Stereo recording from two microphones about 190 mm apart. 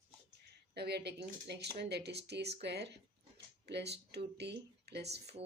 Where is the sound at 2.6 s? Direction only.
60° right (ahead or behind).